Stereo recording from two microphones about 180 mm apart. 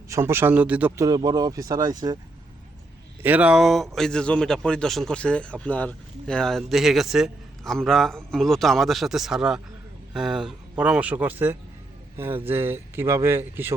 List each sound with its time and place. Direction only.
0.1 s speech: 15° right (ahead or behind)
1.0 s speech: 20° right (ahead or behind)
3.2 s a man's voice: 10° right (ahead or behind)